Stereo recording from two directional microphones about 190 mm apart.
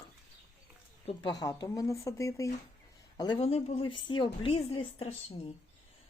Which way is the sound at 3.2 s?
25° left (ahead or behind).